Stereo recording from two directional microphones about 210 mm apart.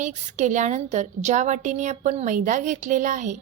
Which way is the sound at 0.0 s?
35° right (ahead or behind).